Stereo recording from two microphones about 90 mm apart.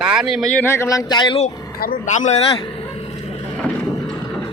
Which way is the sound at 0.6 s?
30° left (ahead or behind).